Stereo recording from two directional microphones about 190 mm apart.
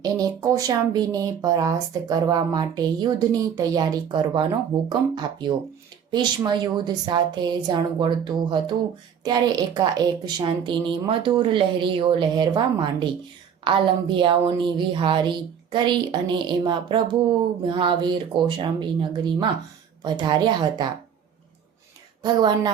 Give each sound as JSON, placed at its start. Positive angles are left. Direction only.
{"t": 0.0, "sound": "speech", "side_deg": -20}
{"t": 22.2, "sound": "speech", "side_deg": -20}